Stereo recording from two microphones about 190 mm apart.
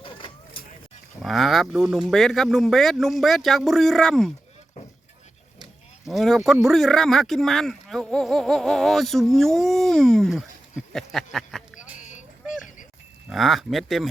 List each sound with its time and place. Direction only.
1.2 s speech: centre (ahead or behind)
6.1 s speech: centre (ahead or behind)
11.9 s a sound: 40° left (ahead or behind)
13.3 s speech: centre (ahead or behind)